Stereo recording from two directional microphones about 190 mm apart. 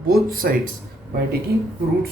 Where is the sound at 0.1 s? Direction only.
50° right (ahead or behind).